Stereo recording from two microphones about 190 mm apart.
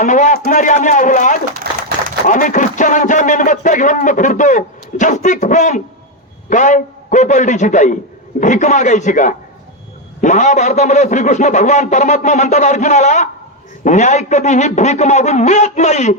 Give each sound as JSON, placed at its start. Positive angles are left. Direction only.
{"t": 0.0, "sound": "speech", "side_deg": 40}
{"t": 1.7, "sound": "a sound", "side_deg": -55}
{"t": 2.2, "sound": "speech", "side_deg": 45}